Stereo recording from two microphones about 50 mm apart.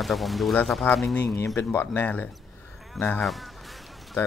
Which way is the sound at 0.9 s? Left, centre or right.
Left.